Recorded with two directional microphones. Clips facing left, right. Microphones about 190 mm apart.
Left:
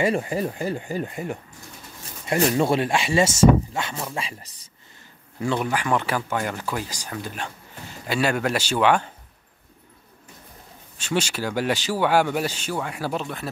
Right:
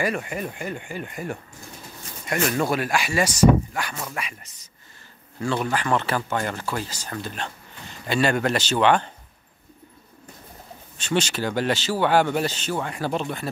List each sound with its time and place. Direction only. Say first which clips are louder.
0.0 s speech: left 4 dB; 30° left (ahead or behind)
2.2 s speech: left 3 dB; 30° left (ahead or behind)
5.4 s speech: even; 15° left (ahead or behind)
11.0 s speech: right 1 dB; 10° left (ahead or behind)